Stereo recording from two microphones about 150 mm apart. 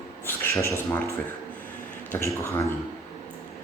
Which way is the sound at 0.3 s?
15° left (ahead or behind).